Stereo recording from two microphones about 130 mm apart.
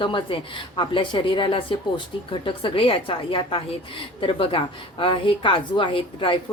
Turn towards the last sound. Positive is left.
turn(degrees=40)  # may be behind; listen again after turning